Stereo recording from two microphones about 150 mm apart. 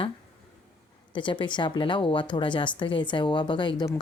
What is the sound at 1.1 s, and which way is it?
Speech, 30° left (ahead or behind).